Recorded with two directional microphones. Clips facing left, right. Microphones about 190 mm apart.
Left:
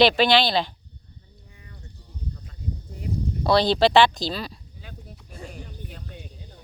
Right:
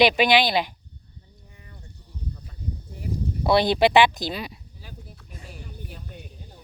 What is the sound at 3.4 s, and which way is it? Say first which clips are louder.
Speech: even; 20° right (ahead or behind).